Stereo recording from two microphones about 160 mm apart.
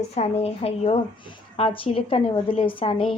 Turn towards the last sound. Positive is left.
turn(degrees=35)  # may be behind; listen again after turning